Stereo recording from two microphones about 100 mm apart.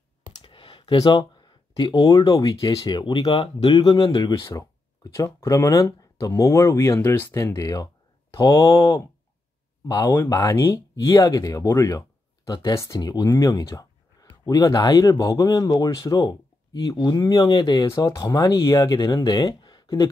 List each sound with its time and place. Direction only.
0.4 s clicking: 60° left (ahead or behind)
0.9 s speech: 45° left (ahead or behind)
3.3 s speech: 65° left (ahead or behind); by 7.3 s 20° left (ahead or behind)
7.3 s speech: 35° left (ahead or behind)
13.0 s speech: 45° left (ahead or behind)
17.8 s speech: 30° left (ahead or behind)